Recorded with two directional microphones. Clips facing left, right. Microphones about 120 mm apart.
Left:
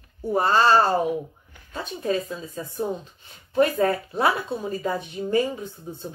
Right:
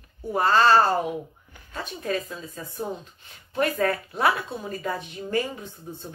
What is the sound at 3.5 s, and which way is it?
A woman's voice, 25° left (ahead or behind).